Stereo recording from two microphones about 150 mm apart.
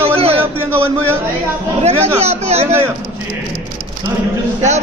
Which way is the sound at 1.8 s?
45° right (ahead or behind).